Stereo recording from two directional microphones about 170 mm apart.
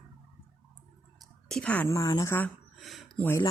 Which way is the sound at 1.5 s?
5° left (ahead or behind).